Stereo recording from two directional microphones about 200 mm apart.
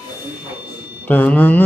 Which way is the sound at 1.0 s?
10° left (ahead or behind).